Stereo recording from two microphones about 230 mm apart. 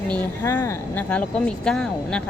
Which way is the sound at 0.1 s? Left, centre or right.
Centre.